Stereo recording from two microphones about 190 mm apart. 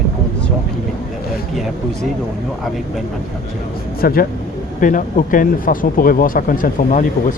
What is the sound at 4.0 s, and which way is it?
Speech, 50° left (ahead or behind).